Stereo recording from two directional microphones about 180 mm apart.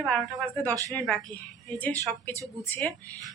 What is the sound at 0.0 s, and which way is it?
Speech, centre (ahead or behind).